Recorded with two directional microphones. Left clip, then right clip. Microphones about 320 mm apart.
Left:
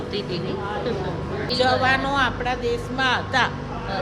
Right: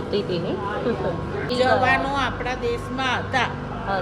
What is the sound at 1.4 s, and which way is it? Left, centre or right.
Speech, centre.